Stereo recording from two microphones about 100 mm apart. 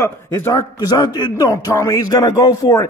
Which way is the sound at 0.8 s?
40° left (ahead or behind).